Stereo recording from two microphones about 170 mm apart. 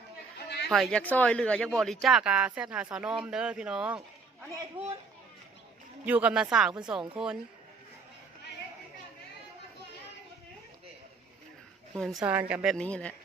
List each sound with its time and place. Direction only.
0.3 s a sound: 80° left
0.7 s speech: 5° left (ahead or behind)
6.1 s speech: 10° right (ahead or behind)
11.9 s a woman's voice: centre (ahead or behind)
12.7 s speech: 5° left (ahead or behind)